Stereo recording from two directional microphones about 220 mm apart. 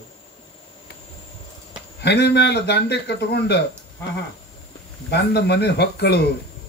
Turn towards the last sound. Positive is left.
turn(degrees=50)  # may be behind; listen again after turning